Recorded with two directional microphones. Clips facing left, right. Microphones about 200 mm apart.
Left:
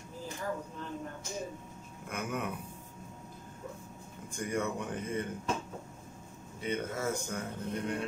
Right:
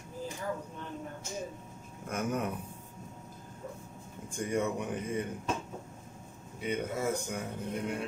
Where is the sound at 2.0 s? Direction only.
40° right (ahead or behind).